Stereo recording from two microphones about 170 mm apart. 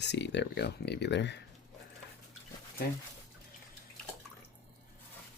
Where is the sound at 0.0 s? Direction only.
90° left.